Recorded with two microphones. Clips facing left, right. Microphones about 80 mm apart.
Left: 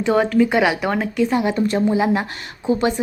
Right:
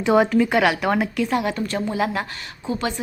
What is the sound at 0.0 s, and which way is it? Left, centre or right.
Speech, centre.